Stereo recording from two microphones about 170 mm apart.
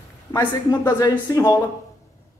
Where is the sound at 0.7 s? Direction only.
20° left (ahead or behind).